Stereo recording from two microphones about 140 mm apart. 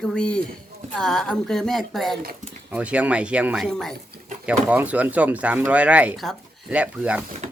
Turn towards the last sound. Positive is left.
turn(degrees=-60)  # may be behind; listen again after turning